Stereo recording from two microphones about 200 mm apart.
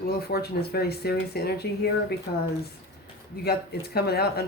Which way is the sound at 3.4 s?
50° left (ahead or behind).